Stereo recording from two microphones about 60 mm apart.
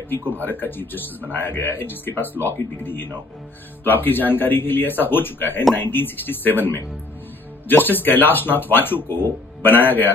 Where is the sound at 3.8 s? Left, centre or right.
Left.